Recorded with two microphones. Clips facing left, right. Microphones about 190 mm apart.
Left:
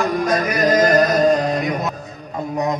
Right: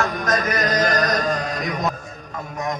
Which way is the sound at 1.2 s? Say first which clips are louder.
Left 8 dB; 40° left (ahead or behind).